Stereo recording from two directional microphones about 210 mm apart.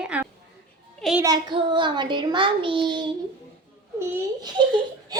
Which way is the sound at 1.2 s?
20° right (ahead or behind).